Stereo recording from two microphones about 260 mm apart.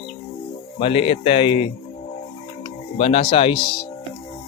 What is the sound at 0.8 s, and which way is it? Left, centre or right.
Speech, left.